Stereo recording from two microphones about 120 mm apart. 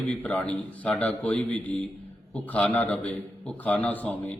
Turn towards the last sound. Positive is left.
turn(degrees=15)  # may be behind; listen again after turning